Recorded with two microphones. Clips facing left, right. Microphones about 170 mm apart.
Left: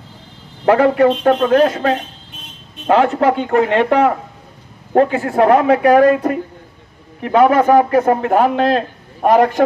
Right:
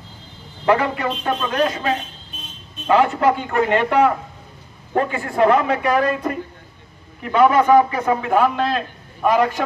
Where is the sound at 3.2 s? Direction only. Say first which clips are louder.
Left 4 dB; 45° left (ahead or behind).